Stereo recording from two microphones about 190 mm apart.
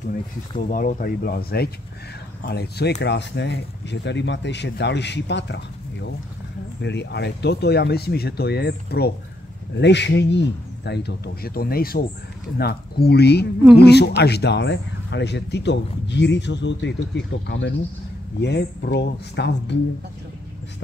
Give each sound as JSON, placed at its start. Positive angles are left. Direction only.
{"t": 0.6, "sound": "speech", "side_deg": 45}
{"t": 6.8, "sound": "speech", "side_deg": 65}